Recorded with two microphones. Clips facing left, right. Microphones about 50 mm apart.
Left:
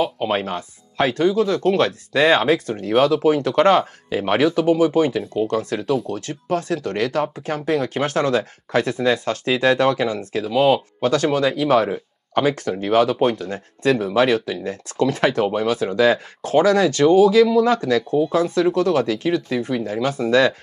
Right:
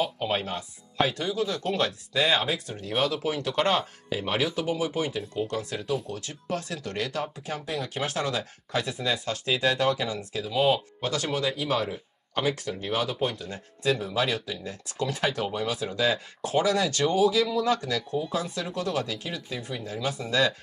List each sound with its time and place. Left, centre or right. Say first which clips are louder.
0.2 s speech: left 7 dB; left
10.5 s speech: left 7 dB; left
11.0 s speech: left 10 dB; left